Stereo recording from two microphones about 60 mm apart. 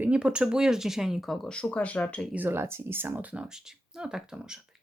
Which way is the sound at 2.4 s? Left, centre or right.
Right.